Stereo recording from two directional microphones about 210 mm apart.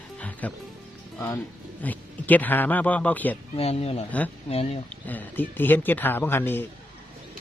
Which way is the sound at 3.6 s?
30° left (ahead or behind).